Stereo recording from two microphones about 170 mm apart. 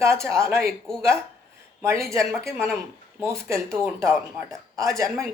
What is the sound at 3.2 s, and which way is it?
Speech, 15° right (ahead or behind).